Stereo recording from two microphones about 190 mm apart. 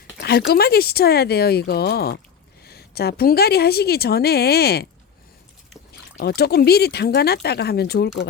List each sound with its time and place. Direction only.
0.2 s a woman's voice: 55° left (ahead or behind)
6.1 s a woman's voice: 55° left (ahead or behind)